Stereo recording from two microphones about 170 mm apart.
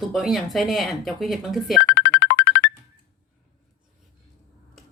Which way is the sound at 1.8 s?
80° left.